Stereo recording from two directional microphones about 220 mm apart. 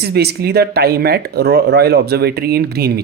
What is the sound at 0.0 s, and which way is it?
Speech, 45° right (ahead or behind).